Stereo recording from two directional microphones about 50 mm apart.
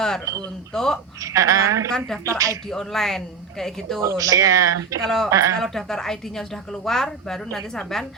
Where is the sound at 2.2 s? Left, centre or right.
Right.